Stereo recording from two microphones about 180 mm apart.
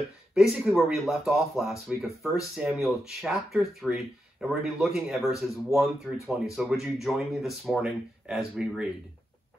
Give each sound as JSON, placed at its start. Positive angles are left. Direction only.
{"t": 0.3, "sound": "speech", "side_deg": 0}